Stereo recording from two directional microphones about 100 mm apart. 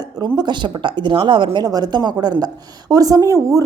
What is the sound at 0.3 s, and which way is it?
A woman's voice, 50° right (ahead or behind).